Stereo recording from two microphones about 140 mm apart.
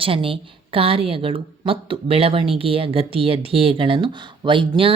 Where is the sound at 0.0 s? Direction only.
40° right (ahead or behind).